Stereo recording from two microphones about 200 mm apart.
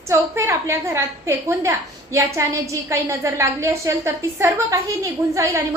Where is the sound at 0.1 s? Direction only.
15° right (ahead or behind).